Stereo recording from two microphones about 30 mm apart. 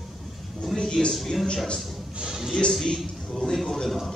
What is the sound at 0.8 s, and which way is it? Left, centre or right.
Speech, left.